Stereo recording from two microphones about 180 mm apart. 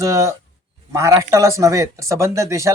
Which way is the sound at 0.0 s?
15° right (ahead or behind).